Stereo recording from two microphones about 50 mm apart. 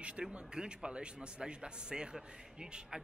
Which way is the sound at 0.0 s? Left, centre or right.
Right.